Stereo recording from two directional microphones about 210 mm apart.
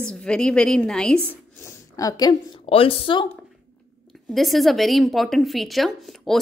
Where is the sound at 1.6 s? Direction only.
15° left (ahead or behind).